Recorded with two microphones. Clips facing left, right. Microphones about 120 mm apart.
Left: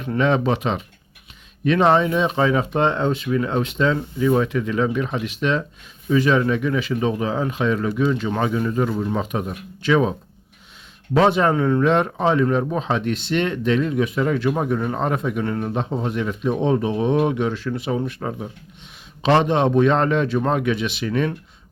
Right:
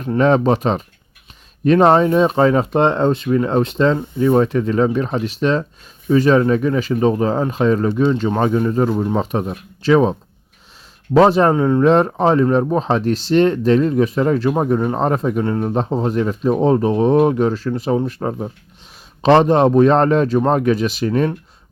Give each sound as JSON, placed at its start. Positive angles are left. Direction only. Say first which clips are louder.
{"t": 0.0, "sound": "speech", "louder": "right 5 dB", "side_deg": -40}
{"t": 11.2, "sound": "speech", "louder": "right 5 dB", "side_deg": -35}